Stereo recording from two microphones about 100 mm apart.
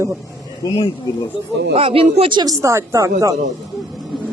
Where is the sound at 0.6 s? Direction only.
50° left (ahead or behind).